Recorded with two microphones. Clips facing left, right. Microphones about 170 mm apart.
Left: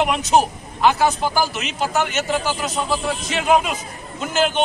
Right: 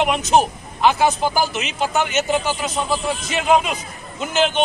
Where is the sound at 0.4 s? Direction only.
Centre (ahead or behind).